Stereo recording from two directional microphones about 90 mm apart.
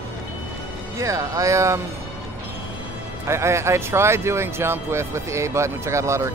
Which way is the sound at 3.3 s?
30° right (ahead or behind).